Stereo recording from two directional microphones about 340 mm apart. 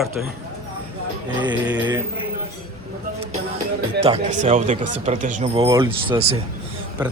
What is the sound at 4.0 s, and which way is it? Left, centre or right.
A man's voice, centre.